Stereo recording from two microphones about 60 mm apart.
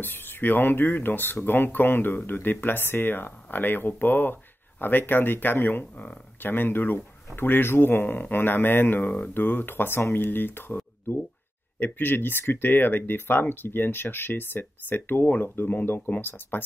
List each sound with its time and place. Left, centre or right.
0.0 s speech: left